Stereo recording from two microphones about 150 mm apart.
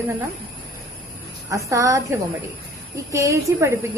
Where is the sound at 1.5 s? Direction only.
20° right (ahead or behind).